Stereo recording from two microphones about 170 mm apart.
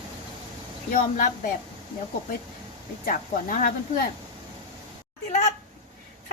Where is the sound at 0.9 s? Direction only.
50° left (ahead or behind).